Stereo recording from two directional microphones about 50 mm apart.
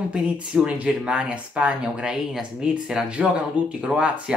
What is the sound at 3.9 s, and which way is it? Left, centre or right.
Speech, centre.